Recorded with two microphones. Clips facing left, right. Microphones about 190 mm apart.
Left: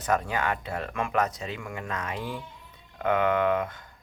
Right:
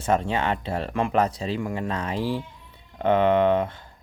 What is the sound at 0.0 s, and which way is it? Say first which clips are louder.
Speech: right 4 dB; 25° right (ahead or behind).